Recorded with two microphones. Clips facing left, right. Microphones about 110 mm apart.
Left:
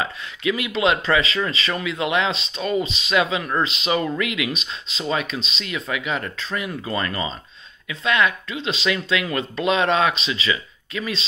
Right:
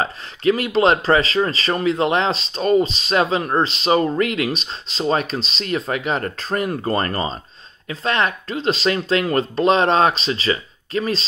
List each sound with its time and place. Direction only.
0.0 s speech: 40° right (ahead or behind)